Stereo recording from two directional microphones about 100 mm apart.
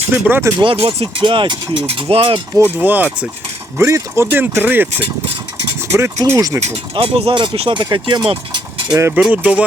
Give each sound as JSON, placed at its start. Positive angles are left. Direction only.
{"t": 0.1, "sound": "speech", "side_deg": -20}
{"t": 0.8, "sound": "speech", "side_deg": -75}
{"t": 2.8, "sound": "speech", "side_deg": -15}
{"t": 3.8, "sound": "speech", "side_deg": -30}
{"t": 5.9, "sound": "speech", "side_deg": -30}
{"t": 6.7, "sound": "speech", "side_deg": -75}
{"t": 7.8, "sound": "speech", "side_deg": -50}
{"t": 9.0, "sound": "speech", "side_deg": -25}
{"t": 9.3, "sound": "speech", "side_deg": -15}